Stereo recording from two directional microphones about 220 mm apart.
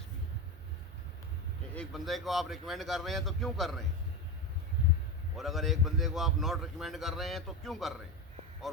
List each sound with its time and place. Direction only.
1.7 s a man's voice: centre (ahead or behind)
5.4 s a man's voice: centre (ahead or behind)